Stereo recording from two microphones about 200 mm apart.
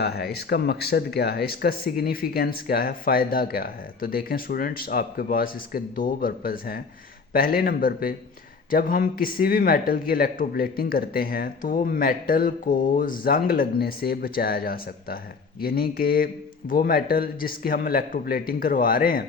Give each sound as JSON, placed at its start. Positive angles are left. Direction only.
{"t": 0.0, "sound": "speech", "side_deg": 55}